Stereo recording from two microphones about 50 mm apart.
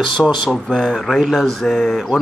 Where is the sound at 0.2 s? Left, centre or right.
Centre.